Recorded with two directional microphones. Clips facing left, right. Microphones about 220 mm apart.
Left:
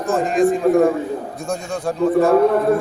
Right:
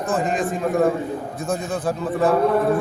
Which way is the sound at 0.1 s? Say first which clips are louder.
Left 7 dB; centre (ahead or behind).